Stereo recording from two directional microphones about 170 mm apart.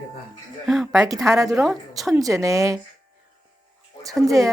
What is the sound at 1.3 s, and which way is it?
Speech, 20° right (ahead or behind).